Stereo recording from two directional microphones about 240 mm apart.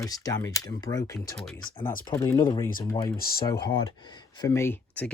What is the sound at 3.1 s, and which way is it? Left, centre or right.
Speech, left.